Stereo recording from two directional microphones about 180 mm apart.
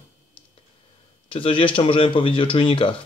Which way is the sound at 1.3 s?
30° left (ahead or behind).